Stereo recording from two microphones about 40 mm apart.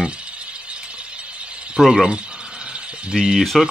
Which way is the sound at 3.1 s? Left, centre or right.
Centre.